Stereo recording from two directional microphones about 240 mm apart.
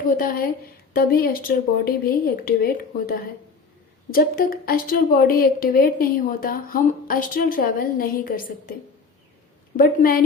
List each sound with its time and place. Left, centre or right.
0.0 s a woman's voice: left
9.7 s a woman's voice: left